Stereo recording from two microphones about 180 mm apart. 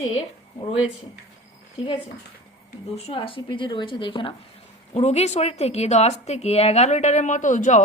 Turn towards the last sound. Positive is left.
turn(degrees=45)  # may be behind; listen again after turning